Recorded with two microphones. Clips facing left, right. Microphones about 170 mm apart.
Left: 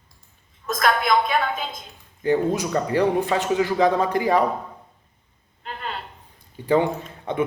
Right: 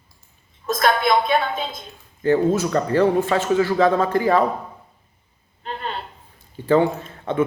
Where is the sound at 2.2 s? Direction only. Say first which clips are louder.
Right 3 dB; 15° left (ahead or behind).